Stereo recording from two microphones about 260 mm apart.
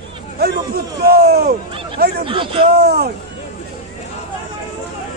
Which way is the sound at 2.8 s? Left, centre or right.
Right.